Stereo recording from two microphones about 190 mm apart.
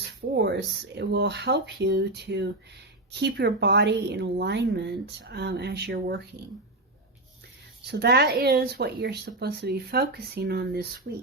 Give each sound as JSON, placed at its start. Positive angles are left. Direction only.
{"t": 0.3, "sound": "a woman's voice", "side_deg": -65}
{"t": 7.9, "sound": "a woman's voice", "side_deg": -60}